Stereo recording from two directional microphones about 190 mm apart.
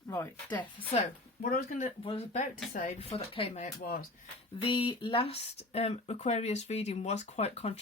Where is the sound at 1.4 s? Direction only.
45° left (ahead or behind).